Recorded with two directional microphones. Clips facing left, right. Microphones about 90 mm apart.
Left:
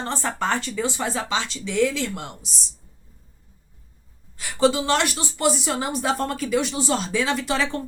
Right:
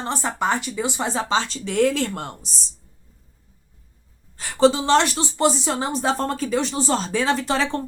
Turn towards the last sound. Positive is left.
turn(degrees=-35)  # may be behind; listen again after turning